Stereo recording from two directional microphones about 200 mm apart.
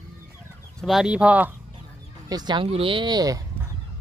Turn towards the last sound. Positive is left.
turn(degrees=-20)  # may be behind; listen again after turning